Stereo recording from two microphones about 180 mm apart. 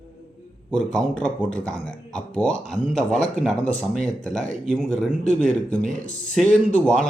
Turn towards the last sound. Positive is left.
turn(degrees=5)  # may be behind; listen again after turning